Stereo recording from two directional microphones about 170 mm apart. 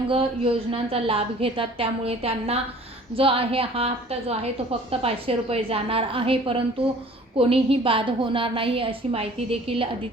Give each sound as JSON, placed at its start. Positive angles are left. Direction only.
{"t": 0.1, "sound": "a woman's voice", "side_deg": -35}